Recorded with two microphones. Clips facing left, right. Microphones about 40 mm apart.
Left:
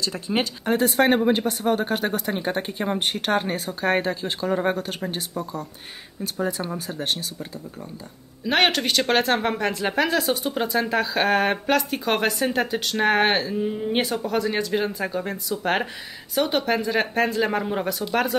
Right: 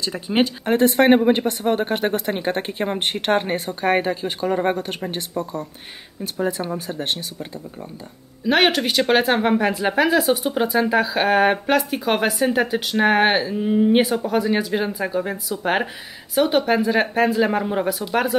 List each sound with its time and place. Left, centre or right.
0.0 s speech: centre
6.4 s speech: centre
8.5 s speech: centre